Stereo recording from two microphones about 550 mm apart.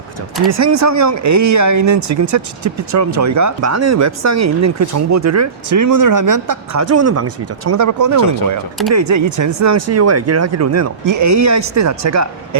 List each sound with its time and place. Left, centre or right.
0.5 s speech: right